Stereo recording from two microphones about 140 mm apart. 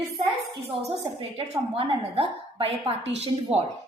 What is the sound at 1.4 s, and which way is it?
A woman's voice, 45° right (ahead or behind).